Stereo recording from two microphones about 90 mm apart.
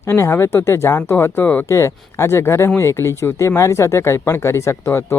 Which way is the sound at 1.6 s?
30° left (ahead or behind).